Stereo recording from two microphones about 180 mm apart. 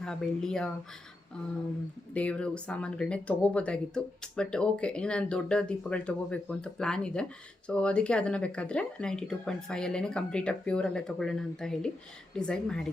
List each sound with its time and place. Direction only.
0.0 s speech: 5° left (ahead or behind)
2.1 s speech: 5° left (ahead or behind)